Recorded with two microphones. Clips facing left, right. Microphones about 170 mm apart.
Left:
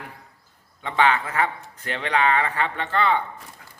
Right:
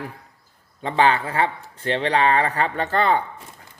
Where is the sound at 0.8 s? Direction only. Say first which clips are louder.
Right 2 dB; 35° right (ahead or behind).